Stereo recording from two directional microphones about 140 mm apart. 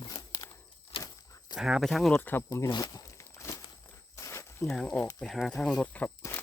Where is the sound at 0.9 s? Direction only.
40° left (ahead or behind).